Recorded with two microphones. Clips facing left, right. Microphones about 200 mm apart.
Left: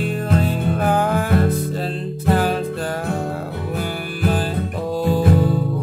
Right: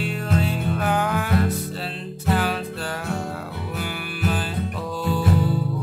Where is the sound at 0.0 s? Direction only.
50° left (ahead or behind).